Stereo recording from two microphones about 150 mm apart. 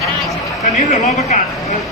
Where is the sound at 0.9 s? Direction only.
50° left (ahead or behind).